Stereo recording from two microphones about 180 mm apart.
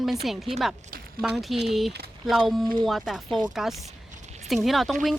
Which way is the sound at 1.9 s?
65° right (ahead or behind).